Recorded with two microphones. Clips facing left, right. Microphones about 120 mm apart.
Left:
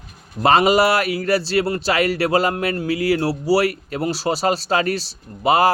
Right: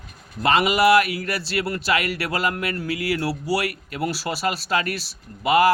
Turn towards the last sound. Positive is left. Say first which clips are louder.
# left 2 dB
turn(degrees=30)  # may be behind; listen again after turning